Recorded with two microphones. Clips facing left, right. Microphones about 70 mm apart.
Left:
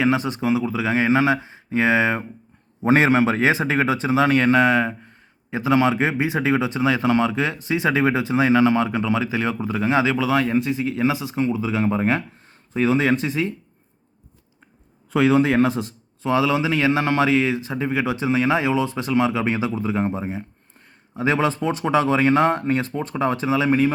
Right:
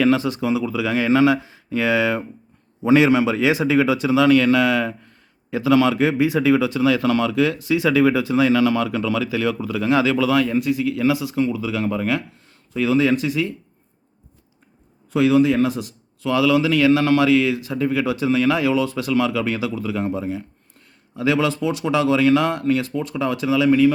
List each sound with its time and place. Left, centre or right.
0.0 s speech: left
15.1 s speech: left